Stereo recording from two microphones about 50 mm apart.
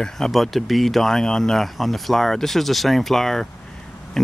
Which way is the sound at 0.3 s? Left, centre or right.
Centre.